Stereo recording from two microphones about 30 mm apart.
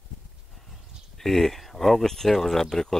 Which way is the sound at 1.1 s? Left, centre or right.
Centre.